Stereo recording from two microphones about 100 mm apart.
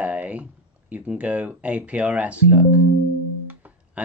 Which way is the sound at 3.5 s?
15° right (ahead or behind).